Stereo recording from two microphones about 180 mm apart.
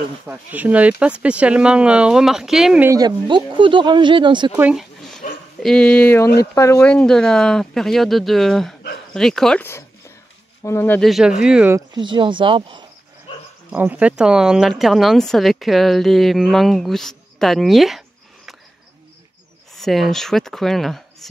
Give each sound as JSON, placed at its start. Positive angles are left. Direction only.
{"t": 0.3, "sound": "speech", "side_deg": -10}
{"t": 2.9, "sound": "speech", "side_deg": -20}
{"t": 4.5, "sound": "a sound", "side_deg": -5}
{"t": 5.6, "sound": "speech", "side_deg": 5}
{"t": 11.0, "sound": "speech", "side_deg": 0}
{"t": 11.7, "sound": "speech", "side_deg": -25}
{"t": 13.7, "sound": "speech", "side_deg": -10}
{"t": 19.7, "sound": "speech", "side_deg": 0}